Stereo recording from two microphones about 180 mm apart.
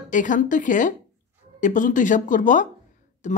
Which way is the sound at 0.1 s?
45° left (ahead or behind).